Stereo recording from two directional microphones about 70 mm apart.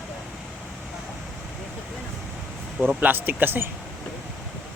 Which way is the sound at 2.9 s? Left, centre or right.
Right.